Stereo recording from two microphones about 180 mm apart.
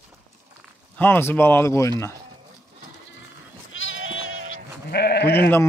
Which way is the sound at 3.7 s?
90° left.